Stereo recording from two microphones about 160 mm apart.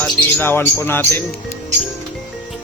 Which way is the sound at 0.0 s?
15° left (ahead or behind).